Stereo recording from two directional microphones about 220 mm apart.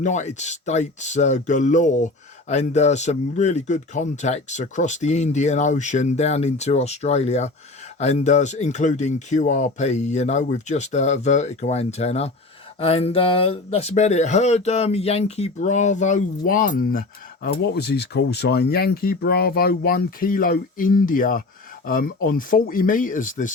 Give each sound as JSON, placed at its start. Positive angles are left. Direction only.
{"t": 0.0, "sound": "speech", "side_deg": 35}